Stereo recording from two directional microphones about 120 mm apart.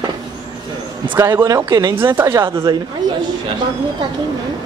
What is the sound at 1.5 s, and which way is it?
Speech, 30° right (ahead or behind).